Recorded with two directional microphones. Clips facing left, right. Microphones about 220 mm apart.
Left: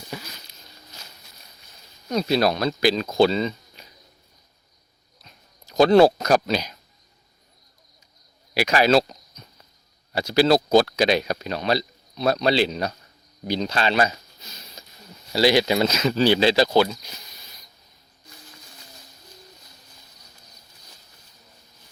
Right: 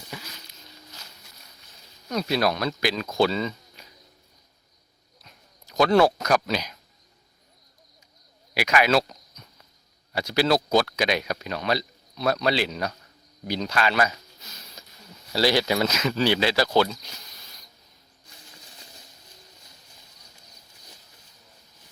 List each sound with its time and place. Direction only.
2.0 s speech: 25° left (ahead or behind)
5.2 s a sound: 30° left (ahead or behind)
8.5 s speech: 30° left (ahead or behind)
16.6 s speech: 10° left (ahead or behind)